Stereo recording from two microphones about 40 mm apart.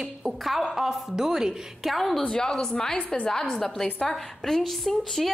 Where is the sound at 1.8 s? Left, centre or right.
Centre.